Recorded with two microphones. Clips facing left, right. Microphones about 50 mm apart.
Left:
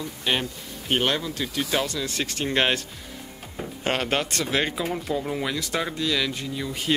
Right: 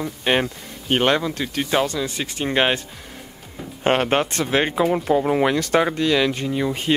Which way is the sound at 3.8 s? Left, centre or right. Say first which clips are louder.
Right 7 dB; right.